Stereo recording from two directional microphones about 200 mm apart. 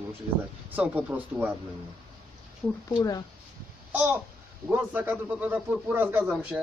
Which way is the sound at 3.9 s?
10° right (ahead or behind).